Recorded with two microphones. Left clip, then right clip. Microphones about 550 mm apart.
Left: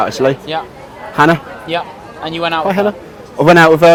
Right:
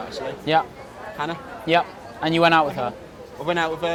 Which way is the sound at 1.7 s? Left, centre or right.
Right.